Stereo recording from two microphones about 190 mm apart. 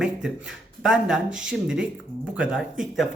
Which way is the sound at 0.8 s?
5° right (ahead or behind).